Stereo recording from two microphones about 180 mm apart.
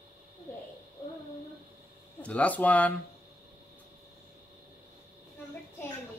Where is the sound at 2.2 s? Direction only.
5° left (ahead or behind).